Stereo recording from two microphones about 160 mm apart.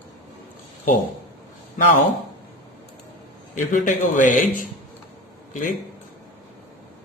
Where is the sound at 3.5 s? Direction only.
55° left (ahead or behind).